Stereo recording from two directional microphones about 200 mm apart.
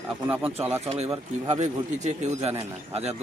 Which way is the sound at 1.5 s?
35° right (ahead or behind).